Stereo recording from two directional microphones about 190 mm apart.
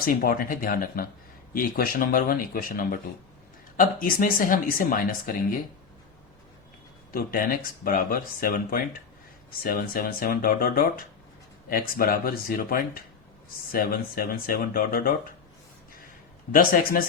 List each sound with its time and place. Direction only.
0.0 s speech: 50° left (ahead or behind)
4.0 s speech: 50° left (ahead or behind)
7.1 s speech: 50° left (ahead or behind)
16.5 s speech: 45° left (ahead or behind)